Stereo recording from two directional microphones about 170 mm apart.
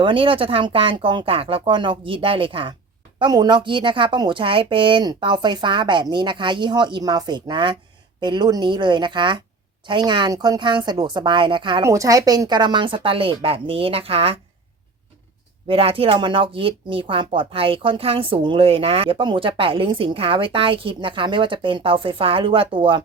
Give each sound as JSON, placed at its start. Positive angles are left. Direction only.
{"t": 0.0, "sound": "a woman's voice", "side_deg": -30}
{"t": 15.6, "sound": "speech", "side_deg": -35}